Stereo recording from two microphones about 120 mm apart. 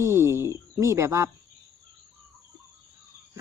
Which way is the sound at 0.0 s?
20° right (ahead or behind).